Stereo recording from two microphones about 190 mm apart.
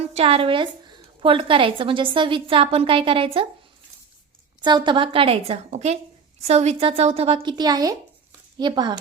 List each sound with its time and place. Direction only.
0.1 s a woman's voice: 30° right (ahead or behind)
4.6 s a woman's voice: 25° right (ahead or behind)